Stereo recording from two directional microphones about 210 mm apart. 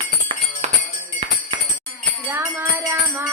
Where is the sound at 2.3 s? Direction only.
10° right (ahead or behind).